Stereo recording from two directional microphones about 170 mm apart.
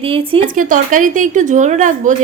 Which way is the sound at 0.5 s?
50° right (ahead or behind).